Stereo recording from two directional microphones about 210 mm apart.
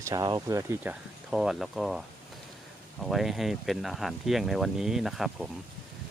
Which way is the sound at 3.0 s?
Centre (ahead or behind).